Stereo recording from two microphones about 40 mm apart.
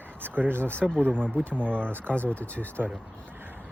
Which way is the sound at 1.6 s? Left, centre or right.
Left.